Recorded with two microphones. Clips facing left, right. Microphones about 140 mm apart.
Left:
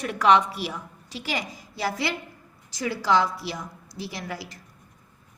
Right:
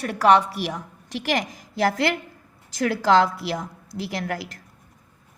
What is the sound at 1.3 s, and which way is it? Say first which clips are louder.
Speech: right 6 dB; 70° right (ahead or behind).